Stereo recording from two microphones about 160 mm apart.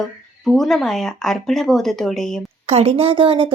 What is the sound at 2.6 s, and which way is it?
Speech, 40° right (ahead or behind).